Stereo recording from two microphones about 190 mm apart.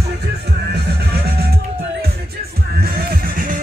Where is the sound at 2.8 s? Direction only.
55° right (ahead or behind).